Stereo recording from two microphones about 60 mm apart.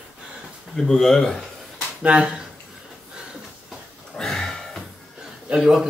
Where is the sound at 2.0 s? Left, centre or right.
Centre.